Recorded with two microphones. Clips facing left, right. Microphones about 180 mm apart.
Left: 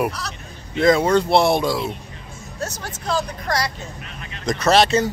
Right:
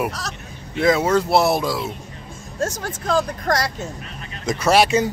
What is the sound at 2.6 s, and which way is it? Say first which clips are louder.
Speech: right 5 dB; 50° right (ahead or behind).